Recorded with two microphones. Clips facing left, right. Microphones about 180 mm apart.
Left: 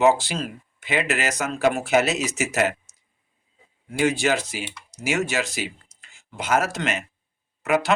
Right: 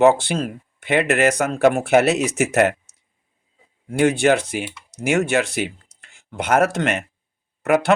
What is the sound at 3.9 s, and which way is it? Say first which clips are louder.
Speech: right 5 dB; 55° right (ahead or behind).